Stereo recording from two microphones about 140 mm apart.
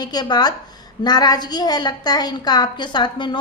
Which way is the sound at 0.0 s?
30° left (ahead or behind).